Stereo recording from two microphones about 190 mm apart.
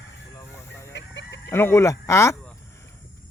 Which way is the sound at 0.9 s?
65° left (ahead or behind).